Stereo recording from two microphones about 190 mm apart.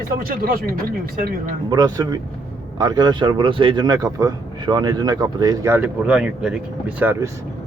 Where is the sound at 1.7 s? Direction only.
20° right (ahead or behind).